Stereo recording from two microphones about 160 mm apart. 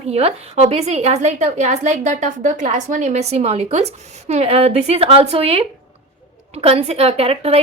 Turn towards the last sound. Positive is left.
turn(degrees=-40)  # may be behind; listen again after turning